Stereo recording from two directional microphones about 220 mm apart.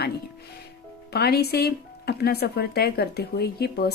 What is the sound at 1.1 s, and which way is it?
Speech, 45° left (ahead or behind).